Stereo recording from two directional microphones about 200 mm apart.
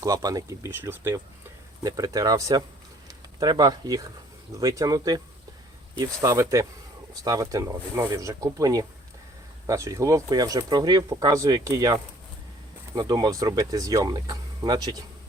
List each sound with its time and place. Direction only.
0.0 s speech: 20° right (ahead or behind)